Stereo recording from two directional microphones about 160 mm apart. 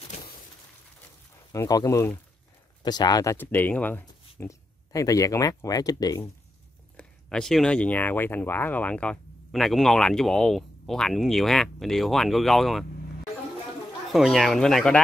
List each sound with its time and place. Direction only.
1.5 s speech: 20° left (ahead or behind)
3.3 s speech: 10° left (ahead or behind)
7.0 s speech: 5° left (ahead or behind)
14.1 s speech: centre (ahead or behind)